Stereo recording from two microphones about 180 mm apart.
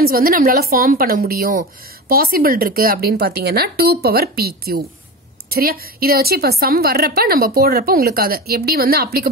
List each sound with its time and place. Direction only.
0.0 s speech: 55° right (ahead or behind)